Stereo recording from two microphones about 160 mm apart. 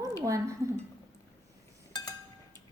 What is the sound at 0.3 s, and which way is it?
Speech, 20° right (ahead or behind).